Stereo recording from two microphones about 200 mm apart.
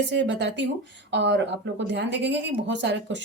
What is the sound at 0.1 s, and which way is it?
Speech, 60° right (ahead or behind).